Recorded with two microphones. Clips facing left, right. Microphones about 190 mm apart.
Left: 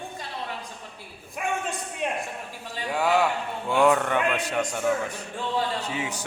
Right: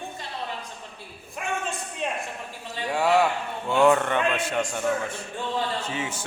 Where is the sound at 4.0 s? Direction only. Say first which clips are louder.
Even; 10° left (ahead or behind).